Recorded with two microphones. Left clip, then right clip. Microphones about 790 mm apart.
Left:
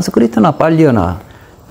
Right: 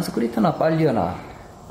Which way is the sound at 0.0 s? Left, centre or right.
Left.